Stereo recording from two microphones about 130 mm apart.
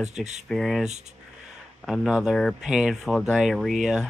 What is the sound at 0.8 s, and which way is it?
Speech, 60° right (ahead or behind).